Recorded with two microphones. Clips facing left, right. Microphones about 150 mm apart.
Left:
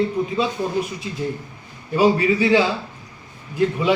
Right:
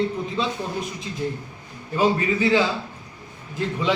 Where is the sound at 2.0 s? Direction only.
10° left (ahead or behind).